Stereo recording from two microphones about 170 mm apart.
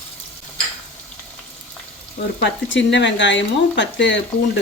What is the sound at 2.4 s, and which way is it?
Speech, 90° left.